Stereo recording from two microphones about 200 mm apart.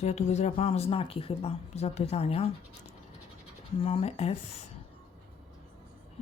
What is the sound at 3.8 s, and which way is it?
Speech, 30° left (ahead or behind).